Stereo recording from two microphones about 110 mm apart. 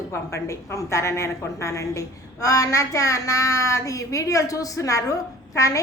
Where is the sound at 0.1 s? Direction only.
25° left (ahead or behind).